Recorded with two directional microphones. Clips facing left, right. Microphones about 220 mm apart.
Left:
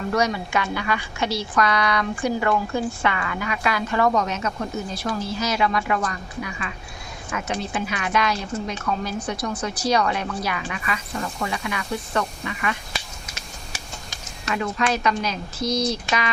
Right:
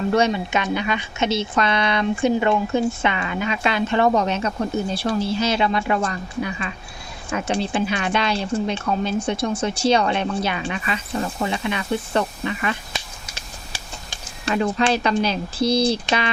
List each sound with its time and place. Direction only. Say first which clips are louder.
0.1 s a woman's voice: right 2 dB; 25° right (ahead or behind)